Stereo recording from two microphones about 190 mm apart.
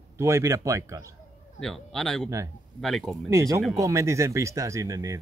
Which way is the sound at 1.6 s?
Centre (ahead or behind).